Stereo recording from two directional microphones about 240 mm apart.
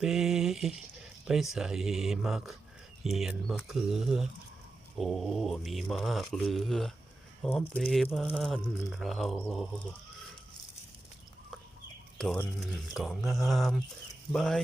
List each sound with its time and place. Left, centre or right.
0.0 s mantra: centre
12.1 s mantra: centre